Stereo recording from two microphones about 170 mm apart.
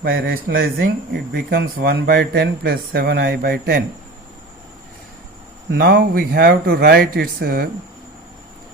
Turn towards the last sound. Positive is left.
turn(degrees=-60)  # may be behind; listen again after turning